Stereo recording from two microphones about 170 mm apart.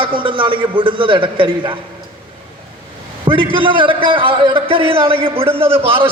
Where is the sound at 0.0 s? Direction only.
30° right (ahead or behind).